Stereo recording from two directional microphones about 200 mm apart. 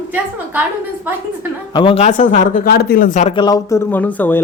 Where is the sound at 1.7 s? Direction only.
25° left (ahead or behind).